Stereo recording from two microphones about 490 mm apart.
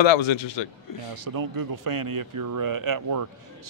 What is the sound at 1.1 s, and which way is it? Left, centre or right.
A man's voice, right.